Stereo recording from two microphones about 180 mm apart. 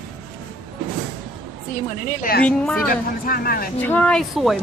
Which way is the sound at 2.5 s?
5° left (ahead or behind).